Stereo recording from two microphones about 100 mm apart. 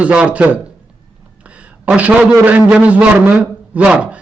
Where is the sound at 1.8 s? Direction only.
10° right (ahead or behind).